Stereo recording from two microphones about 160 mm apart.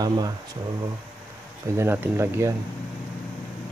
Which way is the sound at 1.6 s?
15° right (ahead or behind).